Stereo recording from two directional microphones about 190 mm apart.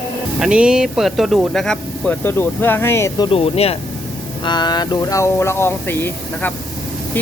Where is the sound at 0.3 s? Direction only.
5° right (ahead or behind); by 3.2 s 15° left (ahead or behind).